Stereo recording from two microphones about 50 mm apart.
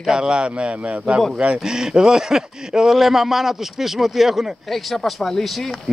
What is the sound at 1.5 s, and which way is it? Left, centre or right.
Speech, centre.